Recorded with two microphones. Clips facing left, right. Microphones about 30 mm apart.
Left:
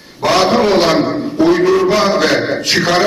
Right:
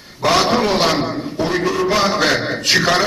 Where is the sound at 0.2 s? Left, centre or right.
Centre.